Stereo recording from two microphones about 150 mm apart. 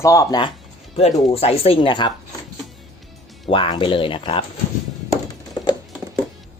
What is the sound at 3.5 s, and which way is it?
Speech, 35° left (ahead or behind).